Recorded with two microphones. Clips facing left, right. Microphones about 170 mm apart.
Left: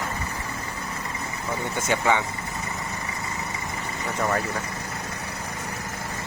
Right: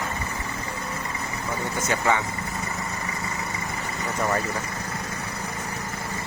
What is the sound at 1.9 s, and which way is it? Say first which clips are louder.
Speech: left 1 dB; 15° left (ahead or behind).